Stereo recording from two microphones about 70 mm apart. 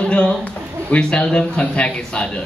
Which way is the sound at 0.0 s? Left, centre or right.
Centre.